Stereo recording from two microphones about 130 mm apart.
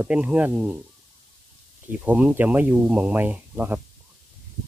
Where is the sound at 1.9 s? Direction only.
15° right (ahead or behind).